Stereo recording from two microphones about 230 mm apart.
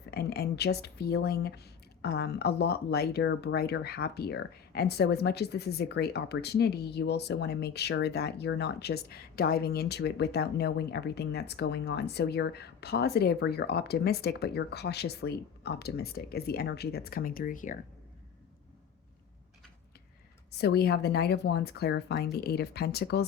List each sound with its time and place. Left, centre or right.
0.1 s speech: left
20.5 s speech: left